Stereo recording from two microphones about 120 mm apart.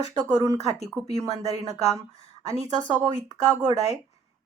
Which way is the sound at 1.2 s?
25° right (ahead or behind).